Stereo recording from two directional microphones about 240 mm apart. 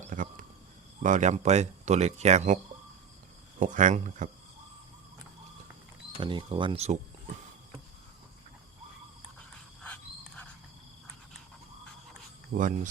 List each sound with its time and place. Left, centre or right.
0.1 s a sound: right
1.0 s speech: right
3.6 s speech: right
6.1 s speech: centre
9.8 s a sound: centre
12.5 s speech: right